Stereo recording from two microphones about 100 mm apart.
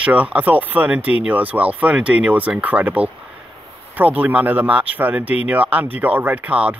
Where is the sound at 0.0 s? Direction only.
15° right (ahead or behind).